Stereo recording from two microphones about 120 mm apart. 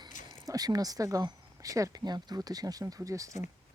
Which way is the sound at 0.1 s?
90° left.